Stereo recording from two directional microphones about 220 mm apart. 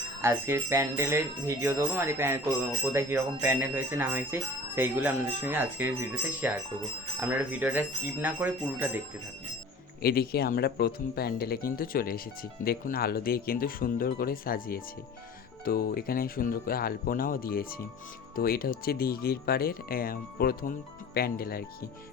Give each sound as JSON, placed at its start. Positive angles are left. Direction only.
{"t": 0.2, "sound": "speech", "side_deg": -10}
{"t": 10.0, "sound": "speech", "side_deg": 45}